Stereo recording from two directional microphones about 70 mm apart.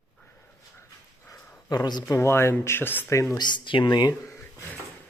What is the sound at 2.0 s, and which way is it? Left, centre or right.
Speech, left.